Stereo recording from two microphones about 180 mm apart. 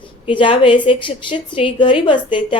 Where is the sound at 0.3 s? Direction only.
30° left (ahead or behind).